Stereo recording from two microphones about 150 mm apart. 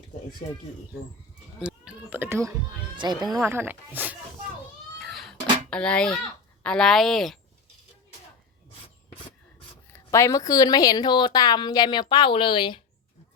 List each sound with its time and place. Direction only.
1.6 s speech: 5° right (ahead or behind)
3.0 s speech: 30° right (ahead or behind)
3.2 s speech: centre (ahead or behind)
3.5 s speech: 15° right (ahead or behind)
5.0 s a sound: centre (ahead or behind)
5.7 s speech: 5° left (ahead or behind)
10.1 s a woman's voice: 20° left (ahead or behind)